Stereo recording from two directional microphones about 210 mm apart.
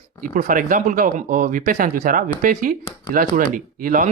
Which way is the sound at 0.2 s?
40° right (ahead or behind).